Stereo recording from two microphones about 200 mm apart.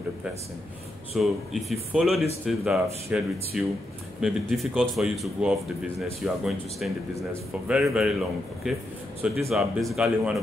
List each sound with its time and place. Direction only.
1.1 s speech: centre (ahead or behind)